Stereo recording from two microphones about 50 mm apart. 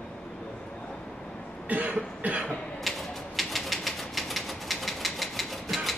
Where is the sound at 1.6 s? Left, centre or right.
Right.